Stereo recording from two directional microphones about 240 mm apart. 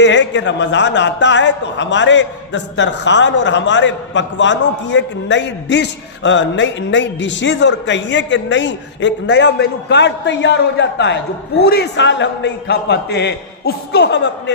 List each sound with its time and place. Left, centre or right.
0.0 s a man's voice: left